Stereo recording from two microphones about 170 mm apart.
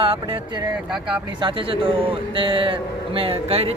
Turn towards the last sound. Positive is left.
turn(degrees=-35)  # may be behind; listen again after turning